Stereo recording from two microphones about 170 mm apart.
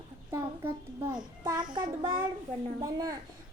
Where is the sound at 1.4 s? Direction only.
25° right (ahead or behind).